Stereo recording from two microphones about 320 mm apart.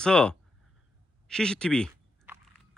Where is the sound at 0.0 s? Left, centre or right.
Centre.